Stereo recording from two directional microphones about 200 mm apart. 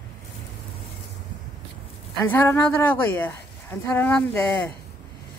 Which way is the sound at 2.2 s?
10° left (ahead or behind).